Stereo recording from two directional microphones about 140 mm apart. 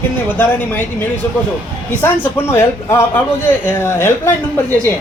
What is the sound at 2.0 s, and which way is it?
Speech, 15° left (ahead or behind).